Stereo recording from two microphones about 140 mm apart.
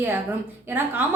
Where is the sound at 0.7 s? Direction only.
15° right (ahead or behind).